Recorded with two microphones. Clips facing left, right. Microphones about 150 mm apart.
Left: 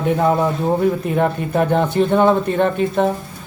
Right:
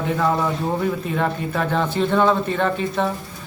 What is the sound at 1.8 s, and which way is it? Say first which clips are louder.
Speech: left 1 dB; 15° left (ahead or behind).